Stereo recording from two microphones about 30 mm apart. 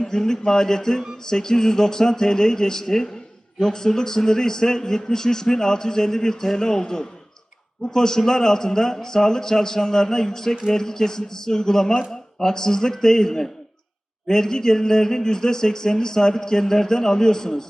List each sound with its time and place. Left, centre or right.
0.0 s a man's voice: centre